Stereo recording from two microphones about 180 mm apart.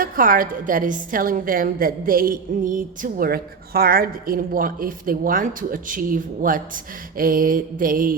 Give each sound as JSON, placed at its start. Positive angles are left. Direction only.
{"t": 0.0, "sound": "a woman's voice", "side_deg": -50}